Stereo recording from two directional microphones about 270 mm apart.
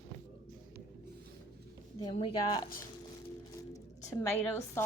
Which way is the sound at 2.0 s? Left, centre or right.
Centre.